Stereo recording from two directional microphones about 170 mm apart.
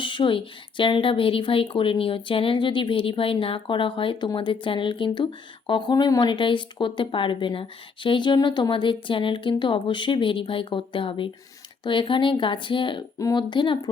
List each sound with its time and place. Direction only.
0.0 s a woman's voice: 30° left (ahead or behind)